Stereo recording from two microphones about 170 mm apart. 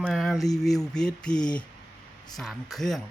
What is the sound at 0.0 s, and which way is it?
Speech, centre (ahead or behind).